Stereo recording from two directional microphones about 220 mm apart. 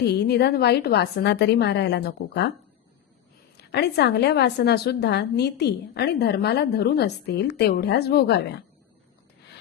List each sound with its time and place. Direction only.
0.0 s a woman's voice: 50° left (ahead or behind)
3.6 s a woman's voice: 50° left (ahead or behind)